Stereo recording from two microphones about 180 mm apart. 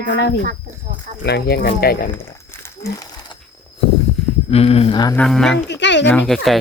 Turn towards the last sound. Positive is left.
turn(degrees=0)  # may be behind; listen again after turning